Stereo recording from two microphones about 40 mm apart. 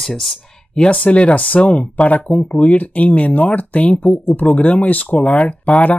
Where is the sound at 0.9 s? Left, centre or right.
Left.